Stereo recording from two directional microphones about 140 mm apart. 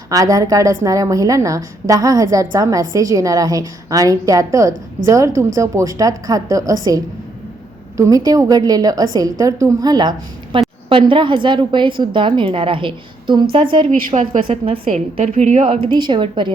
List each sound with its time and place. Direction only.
0.1 s a woman's voice: 25° right (ahead or behind)
14.5 s a woman's voice: 50° right (ahead or behind)